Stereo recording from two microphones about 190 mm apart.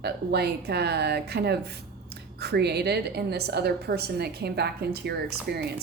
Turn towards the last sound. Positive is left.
turn(degrees=-55)  # may be behind; listen again after turning